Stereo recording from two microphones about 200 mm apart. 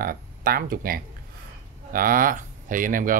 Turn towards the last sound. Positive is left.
turn(degrees=-45)  # may be behind; listen again after turning